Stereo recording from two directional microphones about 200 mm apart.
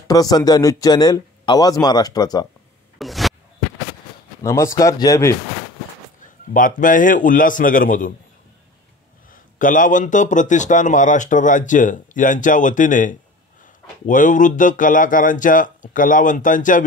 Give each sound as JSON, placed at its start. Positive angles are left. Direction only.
{"t": 0.1, "sound": "a man's voice", "side_deg": 20}
{"t": 3.0, "sound": "a sound", "side_deg": 0}
{"t": 4.4, "sound": "speech", "side_deg": 15}
{"t": 6.2, "sound": "a man's voice", "side_deg": 40}
{"t": 9.3, "sound": "a man's voice", "side_deg": 40}